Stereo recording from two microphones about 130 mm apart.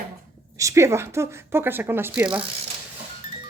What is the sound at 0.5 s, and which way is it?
A woman's voice, 25° right (ahead or behind).